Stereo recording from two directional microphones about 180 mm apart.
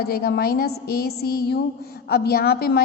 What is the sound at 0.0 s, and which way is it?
A woman's voice, 60° left (ahead or behind).